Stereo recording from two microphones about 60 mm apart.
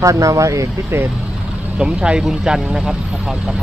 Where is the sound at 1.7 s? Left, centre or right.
Centre.